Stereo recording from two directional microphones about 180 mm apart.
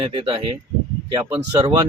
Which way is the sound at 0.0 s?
25° right (ahead or behind).